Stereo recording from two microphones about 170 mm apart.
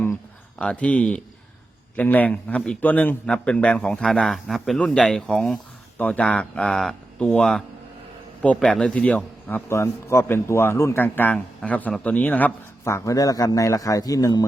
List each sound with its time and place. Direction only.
0.6 s a man's voice: 5° left (ahead or behind)